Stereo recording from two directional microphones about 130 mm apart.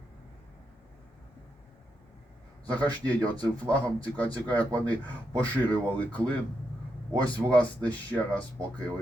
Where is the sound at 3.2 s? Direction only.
30° right (ahead or behind).